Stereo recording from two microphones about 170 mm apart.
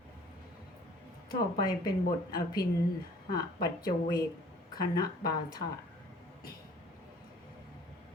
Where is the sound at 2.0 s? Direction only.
60° left (ahead or behind).